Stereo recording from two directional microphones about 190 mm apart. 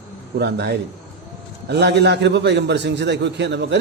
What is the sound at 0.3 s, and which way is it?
A man's voice, 60° right (ahead or behind).